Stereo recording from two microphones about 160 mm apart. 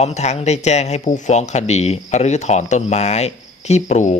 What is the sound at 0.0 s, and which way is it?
Speech, 45° left (ahead or behind).